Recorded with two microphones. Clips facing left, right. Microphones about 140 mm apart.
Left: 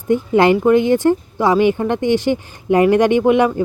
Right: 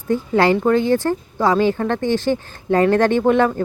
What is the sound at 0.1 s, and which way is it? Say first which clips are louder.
Speech: left 3 dB; 20° left (ahead or behind).